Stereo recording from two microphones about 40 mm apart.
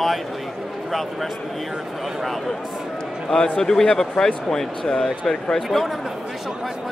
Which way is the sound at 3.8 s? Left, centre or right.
Centre.